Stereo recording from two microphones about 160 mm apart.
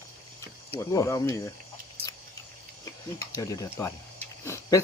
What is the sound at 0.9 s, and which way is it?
Speech, 20° left (ahead or behind).